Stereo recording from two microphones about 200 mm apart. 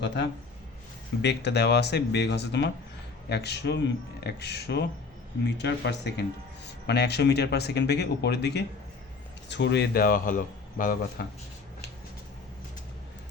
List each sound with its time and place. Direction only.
1.2 s speech: 60° left (ahead or behind); by 11.3 s 45° left (ahead or behind)